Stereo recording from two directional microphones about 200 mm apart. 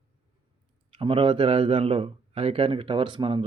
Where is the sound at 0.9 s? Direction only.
25° right (ahead or behind).